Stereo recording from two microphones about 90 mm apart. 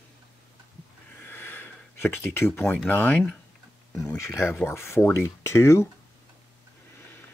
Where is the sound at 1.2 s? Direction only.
20° left (ahead or behind).